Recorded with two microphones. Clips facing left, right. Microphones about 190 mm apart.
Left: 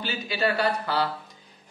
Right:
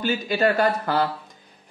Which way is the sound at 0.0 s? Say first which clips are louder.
Right 6 dB; 50° right (ahead or behind).